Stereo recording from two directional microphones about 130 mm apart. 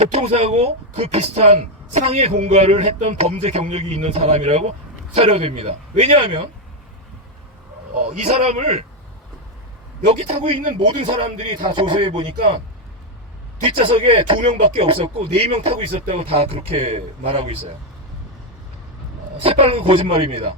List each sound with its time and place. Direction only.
0.0 s speech: 55° right (ahead or behind)
8.2 s a man's voice: 55° right (ahead or behind)
10.1 s speech: 55° right (ahead or behind)
10.8 s speech: 40° right (ahead or behind)
13.7 s speech: 45° right (ahead or behind)
19.4 s speech: 45° right (ahead or behind)